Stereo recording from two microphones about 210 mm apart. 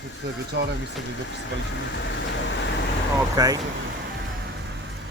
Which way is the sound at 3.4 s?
15° right (ahead or behind).